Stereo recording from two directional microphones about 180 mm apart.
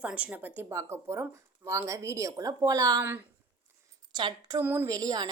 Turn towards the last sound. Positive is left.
turn(degrees=-20)  # may be behind; listen again after turning